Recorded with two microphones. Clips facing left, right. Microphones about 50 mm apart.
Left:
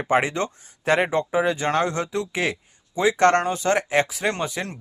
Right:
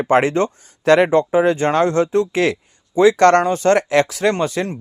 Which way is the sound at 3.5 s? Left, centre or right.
Right.